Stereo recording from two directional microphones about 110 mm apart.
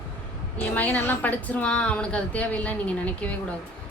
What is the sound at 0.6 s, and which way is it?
A woman's voice, 15° left (ahead or behind).